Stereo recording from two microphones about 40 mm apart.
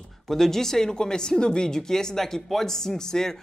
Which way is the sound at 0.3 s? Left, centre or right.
Centre.